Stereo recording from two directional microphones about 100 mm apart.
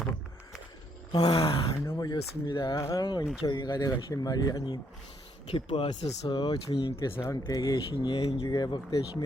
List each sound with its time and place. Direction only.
1.1 s speech: 45° left (ahead or behind)
1.4 s speech: 65° left (ahead or behind)
1.8 s speech: 25° left (ahead or behind)
2.0 s speech: 45° left (ahead or behind)
2.7 s speech: 30° left (ahead or behind)
3.0 s speech: 45° left (ahead or behind)
5.5 s speech: 60° left (ahead or behind)
7.2 s speech: 35° left (ahead or behind)
8.1 s speech: 75° left (ahead or behind)
8.4 s speech: 45° left (ahead or behind)